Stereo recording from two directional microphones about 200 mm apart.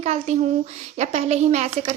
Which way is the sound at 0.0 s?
35° right (ahead or behind).